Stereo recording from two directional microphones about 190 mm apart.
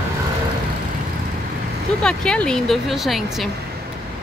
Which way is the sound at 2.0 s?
5° left (ahead or behind).